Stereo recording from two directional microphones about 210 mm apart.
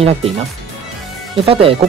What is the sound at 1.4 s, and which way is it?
Speech, 25° right (ahead or behind).